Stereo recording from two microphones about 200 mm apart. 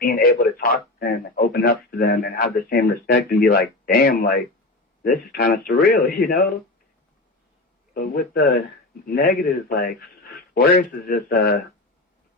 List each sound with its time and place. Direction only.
0.0 s a man's voice: 50° left (ahead or behind)
7.9 s speech: 45° left (ahead or behind)